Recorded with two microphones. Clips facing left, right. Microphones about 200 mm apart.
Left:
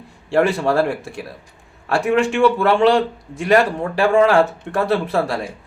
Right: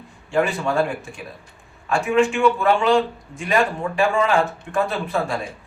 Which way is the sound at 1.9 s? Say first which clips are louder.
Left 1 dB; 75° left (ahead or behind).